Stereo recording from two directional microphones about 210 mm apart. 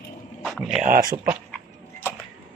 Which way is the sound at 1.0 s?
20° right (ahead or behind).